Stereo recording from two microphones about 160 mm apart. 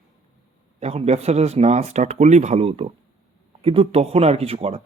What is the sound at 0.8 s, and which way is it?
A man's voice, 40° right (ahead or behind).